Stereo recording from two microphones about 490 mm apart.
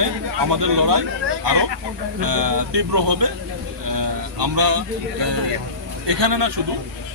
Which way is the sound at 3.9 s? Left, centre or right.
Right.